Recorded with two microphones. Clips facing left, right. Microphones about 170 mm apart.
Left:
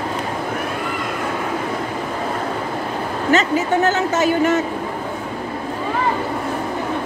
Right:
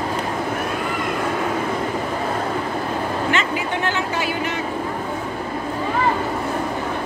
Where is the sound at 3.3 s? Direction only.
40° left (ahead or behind).